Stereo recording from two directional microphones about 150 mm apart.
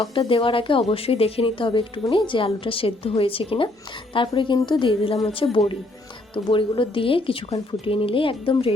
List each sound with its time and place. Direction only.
0.0 s speech: 35° left (ahead or behind)